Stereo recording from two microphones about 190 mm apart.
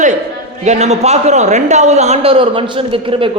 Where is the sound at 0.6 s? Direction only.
35° right (ahead or behind).